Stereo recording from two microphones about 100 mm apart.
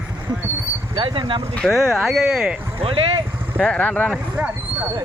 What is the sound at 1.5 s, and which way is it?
Speech, 5° left (ahead or behind).